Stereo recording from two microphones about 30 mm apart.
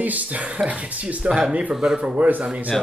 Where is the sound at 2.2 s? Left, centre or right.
Right.